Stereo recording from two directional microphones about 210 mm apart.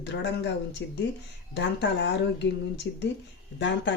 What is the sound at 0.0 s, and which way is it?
Speech, 55° left (ahead or behind).